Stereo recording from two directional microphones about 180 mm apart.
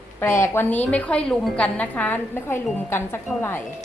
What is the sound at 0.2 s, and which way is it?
A woman's voice, 15° left (ahead or behind).